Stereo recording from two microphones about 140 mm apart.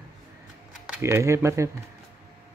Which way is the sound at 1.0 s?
20° right (ahead or behind).